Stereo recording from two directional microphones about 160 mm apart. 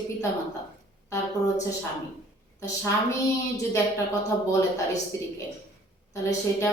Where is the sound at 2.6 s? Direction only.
20° left (ahead or behind).